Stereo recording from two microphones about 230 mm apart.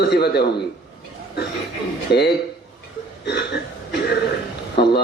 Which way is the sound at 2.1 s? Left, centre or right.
Left.